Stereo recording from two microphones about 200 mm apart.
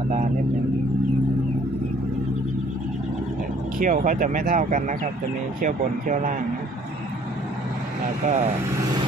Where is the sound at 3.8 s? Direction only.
40° right (ahead or behind).